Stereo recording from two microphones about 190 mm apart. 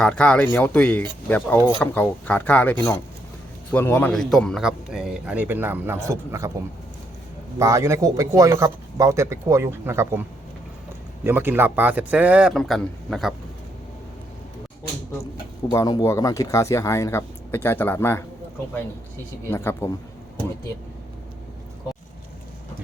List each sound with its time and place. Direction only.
0.0 s a man's voice: 5° left (ahead or behind); by 6.5 s 15° right (ahead or behind)
7.6 s speech: 15° right (ahead or behind); by 13.3 s centre (ahead or behind)
15.7 s speech: 20° left (ahead or behind)
19.5 s speech: 15° left (ahead or behind)